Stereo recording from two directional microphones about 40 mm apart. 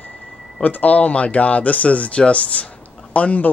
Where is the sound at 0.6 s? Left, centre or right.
Left.